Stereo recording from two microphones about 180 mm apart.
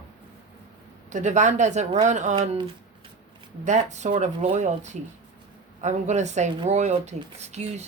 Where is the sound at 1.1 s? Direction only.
40° right (ahead or behind).